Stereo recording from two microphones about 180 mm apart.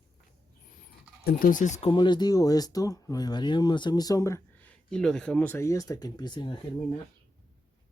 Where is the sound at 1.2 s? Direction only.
50° left (ahead or behind).